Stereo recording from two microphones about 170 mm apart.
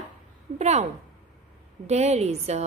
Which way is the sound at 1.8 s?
40° right (ahead or behind).